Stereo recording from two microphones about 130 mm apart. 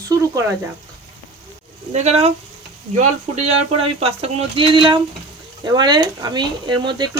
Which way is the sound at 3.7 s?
50° right (ahead or behind).